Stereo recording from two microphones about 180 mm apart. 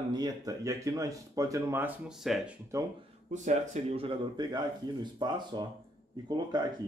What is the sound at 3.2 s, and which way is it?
Speech, 40° right (ahead or behind).